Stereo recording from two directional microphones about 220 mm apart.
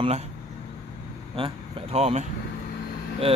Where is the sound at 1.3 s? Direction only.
25° right (ahead or behind).